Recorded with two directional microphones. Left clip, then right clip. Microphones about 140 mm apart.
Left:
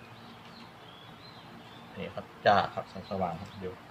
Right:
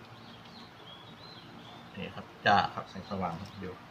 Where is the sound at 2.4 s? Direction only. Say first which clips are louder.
Left 1 dB; 20° left (ahead or behind).